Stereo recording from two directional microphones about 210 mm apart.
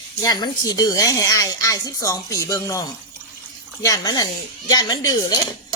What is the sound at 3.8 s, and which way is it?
A child's voice, 15° left (ahead or behind).